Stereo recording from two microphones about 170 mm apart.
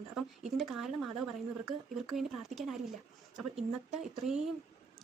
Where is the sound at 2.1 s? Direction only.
Centre (ahead or behind).